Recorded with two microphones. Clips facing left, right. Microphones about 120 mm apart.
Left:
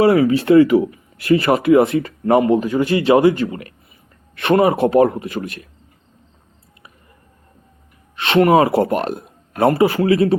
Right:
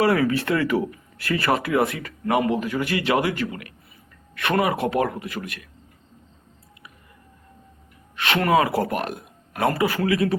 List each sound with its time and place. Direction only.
0.0 s speech: 25° left (ahead or behind)
8.1 s speech: 25° left (ahead or behind)